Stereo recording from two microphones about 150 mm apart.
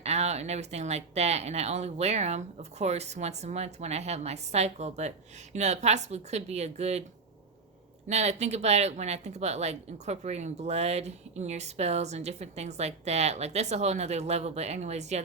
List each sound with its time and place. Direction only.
0.0 s speech: 45° right (ahead or behind)
8.0 s speech: 50° right (ahead or behind)